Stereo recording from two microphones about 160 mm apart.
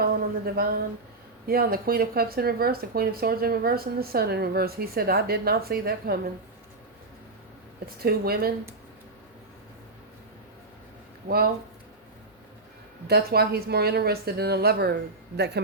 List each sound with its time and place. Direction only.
0.0 s a sound: 70° right (ahead or behind)
1.5 s speech: 70° right (ahead or behind)
7.9 s speech: 70° right (ahead or behind)
11.3 s speech: 65° right (ahead or behind)
13.1 s a woman's voice: 85° right